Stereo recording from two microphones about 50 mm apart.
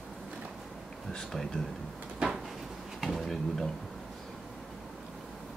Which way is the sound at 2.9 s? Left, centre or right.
Centre.